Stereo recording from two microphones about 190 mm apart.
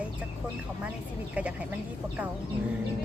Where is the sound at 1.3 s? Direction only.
5° right (ahead or behind).